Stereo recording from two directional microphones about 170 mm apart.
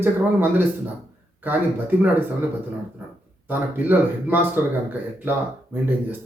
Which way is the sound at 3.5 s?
10° right (ahead or behind).